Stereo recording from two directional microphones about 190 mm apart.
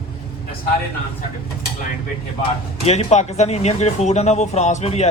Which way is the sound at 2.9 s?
35° left (ahead or behind).